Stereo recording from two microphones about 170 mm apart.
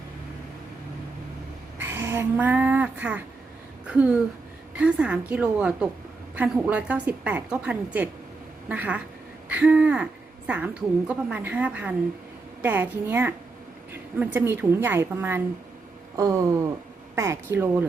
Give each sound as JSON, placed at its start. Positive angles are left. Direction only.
{"t": 1.8, "sound": "a woman's voice", "side_deg": -15}
{"t": 16.1, "sound": "a sound", "side_deg": -20}
{"t": 17.2, "sound": "a woman's voice", "side_deg": -15}